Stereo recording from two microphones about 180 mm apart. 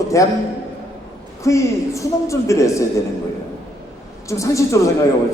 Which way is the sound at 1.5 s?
15° left (ahead or behind).